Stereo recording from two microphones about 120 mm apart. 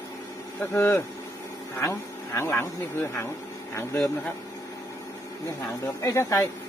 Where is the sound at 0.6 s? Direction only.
20° left (ahead or behind).